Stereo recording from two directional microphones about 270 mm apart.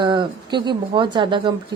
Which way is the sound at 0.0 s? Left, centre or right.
Centre.